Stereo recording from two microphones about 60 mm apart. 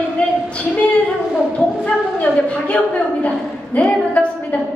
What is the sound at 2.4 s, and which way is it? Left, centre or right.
A woman's voice, left.